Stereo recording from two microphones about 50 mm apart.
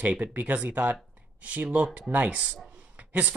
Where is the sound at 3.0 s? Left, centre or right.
Right.